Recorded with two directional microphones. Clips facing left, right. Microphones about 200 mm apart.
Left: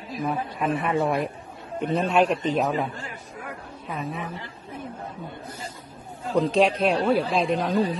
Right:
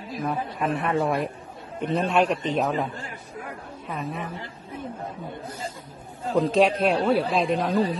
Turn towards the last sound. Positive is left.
turn(degrees=0)  # may be behind; listen again after turning